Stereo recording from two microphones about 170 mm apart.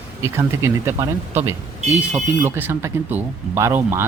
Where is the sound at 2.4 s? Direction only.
10° right (ahead or behind).